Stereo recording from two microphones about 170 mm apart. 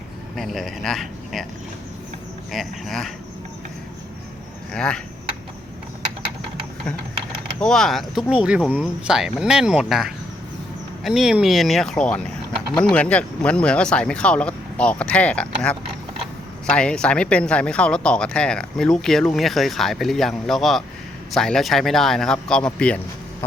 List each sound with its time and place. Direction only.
0.3 s speech: centre (ahead or behind)
2.5 s speech: centre (ahead or behind)
4.7 s speech: 5° left (ahead or behind)
7.6 s speech: 5° left (ahead or behind)